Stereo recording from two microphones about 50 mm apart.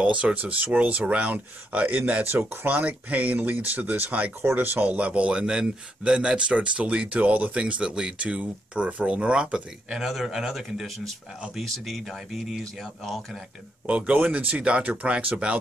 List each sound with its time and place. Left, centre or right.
0.0 s a man's voice: right
9.9 s a man's voice: centre
13.8 s a man's voice: right